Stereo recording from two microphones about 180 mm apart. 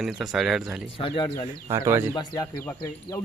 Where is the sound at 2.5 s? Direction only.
10° left (ahead or behind).